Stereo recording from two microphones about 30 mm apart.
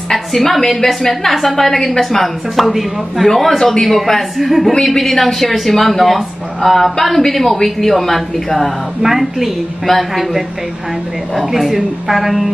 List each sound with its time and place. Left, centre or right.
0.1 s a woman's voice: centre
3.3 s a woman's voice: centre
4.8 s speech: centre
9.0 s a woman's voice: centre